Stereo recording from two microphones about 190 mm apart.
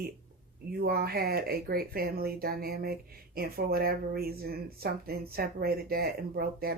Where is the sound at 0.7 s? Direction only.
55° right (ahead or behind).